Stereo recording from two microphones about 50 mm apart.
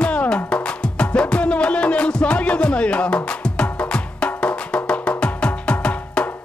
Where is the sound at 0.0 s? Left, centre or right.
Left.